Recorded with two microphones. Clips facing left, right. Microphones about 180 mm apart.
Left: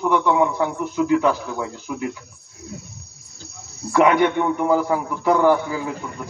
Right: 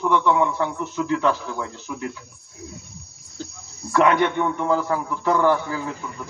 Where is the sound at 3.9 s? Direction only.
10° left (ahead or behind).